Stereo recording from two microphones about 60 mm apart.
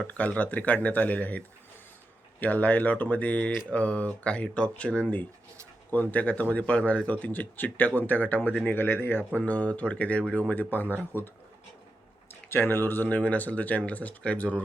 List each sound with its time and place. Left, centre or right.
0.1 s speech: left
9.3 s speech: left
12.3 s speech: left